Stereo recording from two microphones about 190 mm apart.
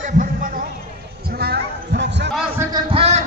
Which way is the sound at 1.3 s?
60° right (ahead or behind).